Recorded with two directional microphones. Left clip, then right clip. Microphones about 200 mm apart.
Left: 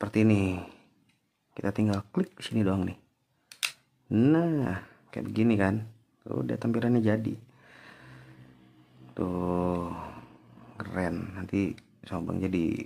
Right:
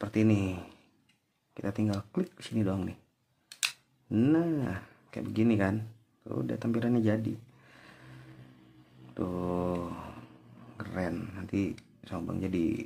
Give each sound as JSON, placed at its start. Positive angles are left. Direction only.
{"t": 0.0, "sound": "speech", "side_deg": 20}
{"t": 3.5, "sound": "camera", "side_deg": 15}
{"t": 9.1, "sound": "a sound", "side_deg": 15}
{"t": 10.8, "sound": "speech", "side_deg": 15}